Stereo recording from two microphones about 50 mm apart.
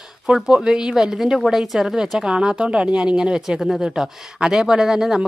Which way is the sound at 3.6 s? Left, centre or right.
Centre.